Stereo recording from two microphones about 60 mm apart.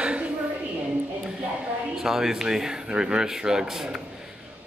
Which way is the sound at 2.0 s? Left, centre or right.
Centre.